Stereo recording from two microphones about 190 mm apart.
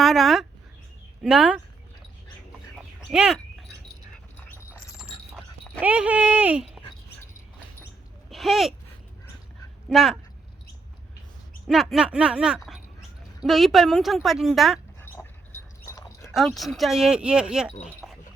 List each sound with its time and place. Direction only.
0.0 s a sound: centre (ahead or behind)
1.2 s speech: 5° right (ahead or behind)
3.1 s speech: 5° right (ahead or behind)
5.8 s speech: 10° right (ahead or behind)
8.3 s a sound: centre (ahead or behind)
9.9 s speech: centre (ahead or behind)
11.7 s speech: centre (ahead or behind)
15.2 s dog: 10° left (ahead or behind)
15.9 s a sound: 15° left (ahead or behind)
16.3 s speech: centre (ahead or behind)
18.0 s wind chime: centre (ahead or behind)